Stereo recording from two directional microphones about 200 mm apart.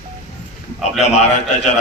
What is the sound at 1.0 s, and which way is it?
Speech, 35° left (ahead or behind).